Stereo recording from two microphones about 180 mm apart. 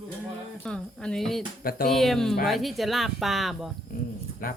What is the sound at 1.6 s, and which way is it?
Speech, 55° left (ahead or behind).